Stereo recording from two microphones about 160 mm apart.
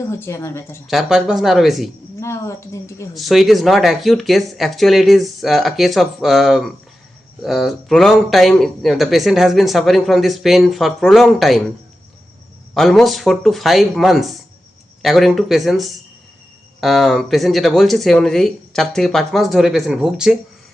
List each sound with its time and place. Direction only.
0.0 s speech: 15° left (ahead or behind)
0.9 s speech: centre (ahead or behind)
2.2 s speech: 20° left (ahead or behind)
3.2 s speech: centre (ahead or behind)
12.7 s speech: centre (ahead or behind)